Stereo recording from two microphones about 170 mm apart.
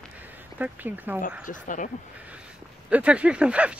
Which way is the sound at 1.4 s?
50° left (ahead or behind).